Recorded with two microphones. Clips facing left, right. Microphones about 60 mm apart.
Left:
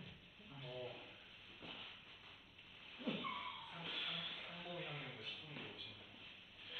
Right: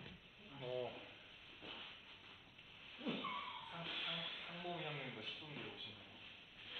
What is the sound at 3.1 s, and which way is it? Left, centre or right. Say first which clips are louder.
Skidding: right 2 dB; centre.